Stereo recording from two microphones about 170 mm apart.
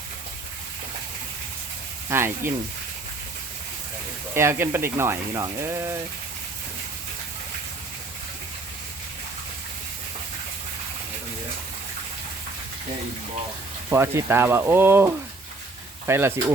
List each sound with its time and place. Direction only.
2.0 s speech: 15° right (ahead or behind)
4.4 s speech: 15° right (ahead or behind)
13.9 s speech: 15° right (ahead or behind)